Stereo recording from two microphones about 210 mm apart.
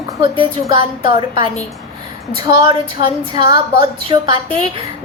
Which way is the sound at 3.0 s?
20° right (ahead or behind).